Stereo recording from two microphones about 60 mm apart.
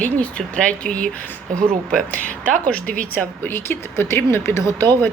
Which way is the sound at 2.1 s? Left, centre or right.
Left.